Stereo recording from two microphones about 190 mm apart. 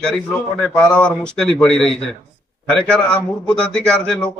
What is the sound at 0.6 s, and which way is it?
Speech, 5° left (ahead or behind).